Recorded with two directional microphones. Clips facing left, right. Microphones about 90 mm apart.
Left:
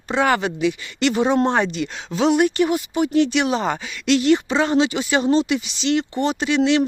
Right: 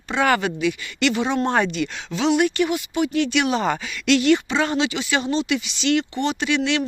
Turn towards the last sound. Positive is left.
turn(degrees=30)  # may be behind; listen again after turning